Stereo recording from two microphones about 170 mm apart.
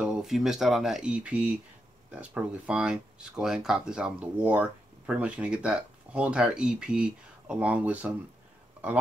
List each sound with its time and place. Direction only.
0.0 s speech: 5° right (ahead or behind)